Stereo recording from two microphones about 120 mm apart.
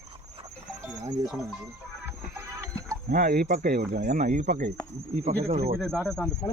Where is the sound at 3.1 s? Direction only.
90° right.